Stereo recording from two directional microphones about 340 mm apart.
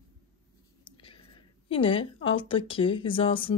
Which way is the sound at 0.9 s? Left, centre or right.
Centre.